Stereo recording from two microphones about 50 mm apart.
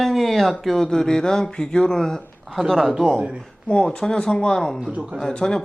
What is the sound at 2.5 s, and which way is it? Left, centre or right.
Speech, centre.